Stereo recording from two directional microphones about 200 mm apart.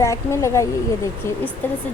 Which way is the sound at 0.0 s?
15° left (ahead or behind).